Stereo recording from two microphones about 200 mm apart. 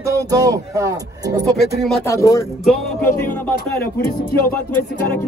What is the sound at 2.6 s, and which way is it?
Speech, centre (ahead or behind).